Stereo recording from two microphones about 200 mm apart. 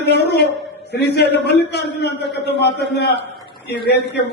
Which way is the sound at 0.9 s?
55° left (ahead or behind).